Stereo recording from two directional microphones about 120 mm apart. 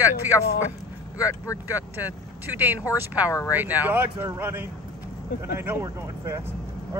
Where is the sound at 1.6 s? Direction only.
15° right (ahead or behind).